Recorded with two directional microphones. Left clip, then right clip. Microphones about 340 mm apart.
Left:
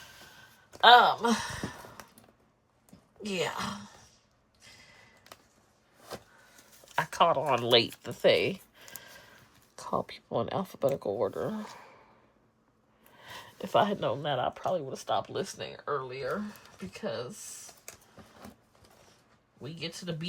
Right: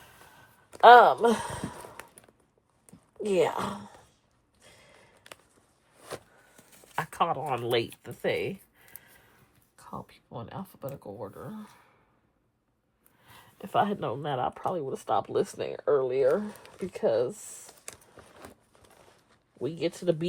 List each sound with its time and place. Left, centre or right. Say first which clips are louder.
0.8 s speech: right 4 dB; centre
3.2 s speech: right 7 dB; centre
6.8 s speech: left 3 dB; centre; by 11.7 s left
13.2 s a sound: left 6 dB; centre
13.7 s speech: left 1 dB; centre
19.6 s speech: right 10 dB; centre